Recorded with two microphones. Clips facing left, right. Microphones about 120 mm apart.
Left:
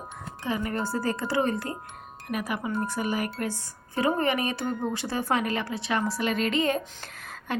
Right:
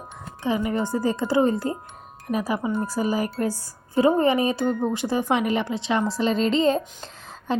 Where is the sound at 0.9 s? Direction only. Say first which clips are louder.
Right 6 dB; 25° right (ahead or behind).